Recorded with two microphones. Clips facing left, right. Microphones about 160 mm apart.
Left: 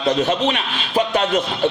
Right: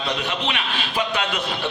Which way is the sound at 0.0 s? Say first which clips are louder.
Left 8 dB; 45° left (ahead or behind).